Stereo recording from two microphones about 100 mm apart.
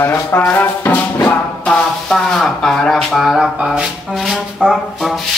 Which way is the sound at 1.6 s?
5° left (ahead or behind).